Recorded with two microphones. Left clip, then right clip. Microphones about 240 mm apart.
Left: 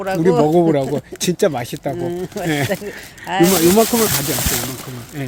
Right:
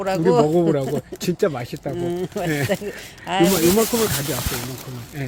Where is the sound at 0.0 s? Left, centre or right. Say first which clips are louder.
Left 2 dB; centre.